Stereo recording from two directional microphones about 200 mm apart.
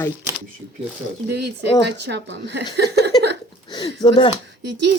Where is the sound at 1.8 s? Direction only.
60° right (ahead or behind).